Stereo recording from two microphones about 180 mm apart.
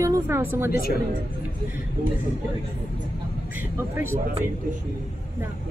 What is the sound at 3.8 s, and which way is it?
Speech, 15° right (ahead or behind).